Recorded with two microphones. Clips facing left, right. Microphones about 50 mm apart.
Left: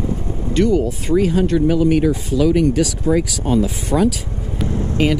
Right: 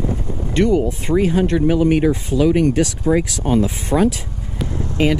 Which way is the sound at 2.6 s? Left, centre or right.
Right.